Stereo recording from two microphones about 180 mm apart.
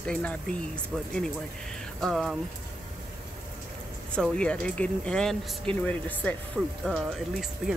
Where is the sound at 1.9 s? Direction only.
Centre (ahead or behind).